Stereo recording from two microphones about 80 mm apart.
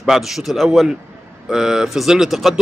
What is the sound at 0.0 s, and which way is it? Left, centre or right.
A man's voice, centre.